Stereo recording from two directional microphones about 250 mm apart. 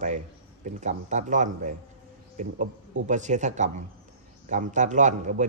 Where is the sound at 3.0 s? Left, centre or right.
Right.